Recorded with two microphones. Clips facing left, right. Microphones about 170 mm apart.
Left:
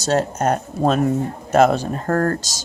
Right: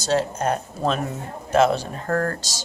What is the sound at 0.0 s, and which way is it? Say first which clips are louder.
Speech: left 3 dB; 45° left (ahead or behind).